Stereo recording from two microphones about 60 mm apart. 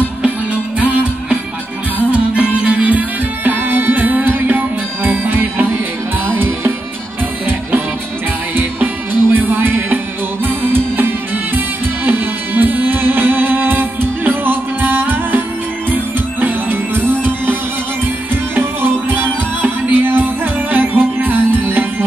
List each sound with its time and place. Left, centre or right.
0.7 s music: right
8.5 s music: right
18.3 s music: right